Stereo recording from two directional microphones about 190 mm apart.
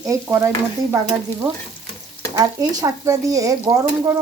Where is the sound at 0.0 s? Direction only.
15° right (ahead or behind).